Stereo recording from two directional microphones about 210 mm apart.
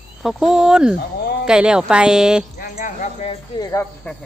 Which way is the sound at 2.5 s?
40° left (ahead or behind).